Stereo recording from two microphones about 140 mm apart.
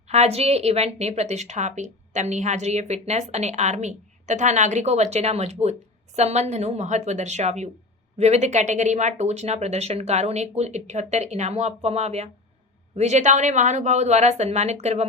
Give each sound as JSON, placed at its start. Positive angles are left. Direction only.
{"t": 0.1, "sound": "a woman's voice", "side_deg": -50}